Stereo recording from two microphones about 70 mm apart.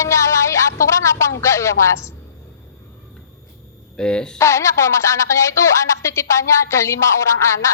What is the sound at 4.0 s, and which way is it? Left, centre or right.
Speech, centre.